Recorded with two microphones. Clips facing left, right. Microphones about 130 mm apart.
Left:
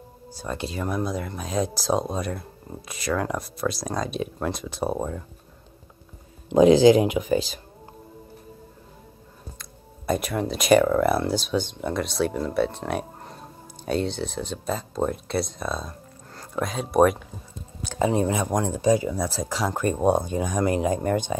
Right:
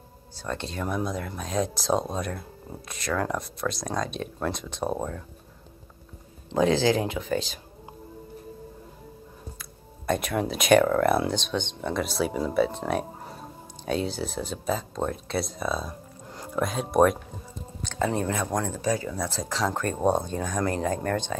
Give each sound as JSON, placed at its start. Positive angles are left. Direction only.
{"t": 0.4, "sound": "speech", "side_deg": 10}
{"t": 6.5, "sound": "speech", "side_deg": 15}
{"t": 7.3, "sound": "speech", "side_deg": 0}
{"t": 10.0, "sound": "speech", "side_deg": 0}
{"t": 17.8, "sound": "speech", "side_deg": 15}